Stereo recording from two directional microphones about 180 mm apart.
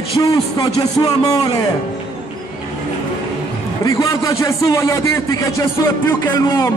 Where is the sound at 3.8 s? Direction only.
20° left (ahead or behind).